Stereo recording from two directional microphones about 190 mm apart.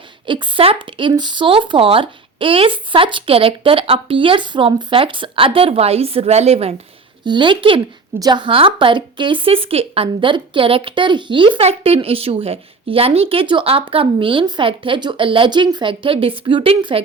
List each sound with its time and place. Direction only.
0.3 s a woman's voice: 25° right (ahead or behind)